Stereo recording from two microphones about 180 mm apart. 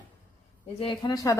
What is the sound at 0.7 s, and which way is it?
Speech, 20° left (ahead or behind).